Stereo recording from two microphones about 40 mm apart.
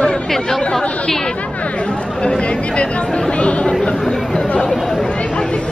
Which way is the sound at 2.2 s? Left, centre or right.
Left.